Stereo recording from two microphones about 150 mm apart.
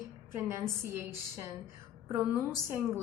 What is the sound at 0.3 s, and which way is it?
A woman's voice, 15° right (ahead or behind).